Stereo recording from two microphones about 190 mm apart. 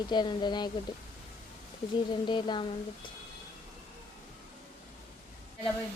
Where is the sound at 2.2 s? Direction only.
25° left (ahead or behind).